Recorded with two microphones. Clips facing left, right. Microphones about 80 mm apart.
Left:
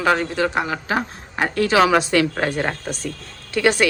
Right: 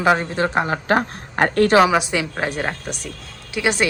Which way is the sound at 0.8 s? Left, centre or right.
Right.